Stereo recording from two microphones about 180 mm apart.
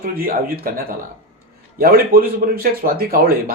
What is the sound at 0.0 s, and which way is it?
Speech, 55° right (ahead or behind).